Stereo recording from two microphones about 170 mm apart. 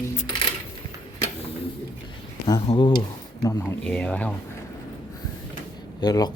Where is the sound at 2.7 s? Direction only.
25° left (ahead or behind).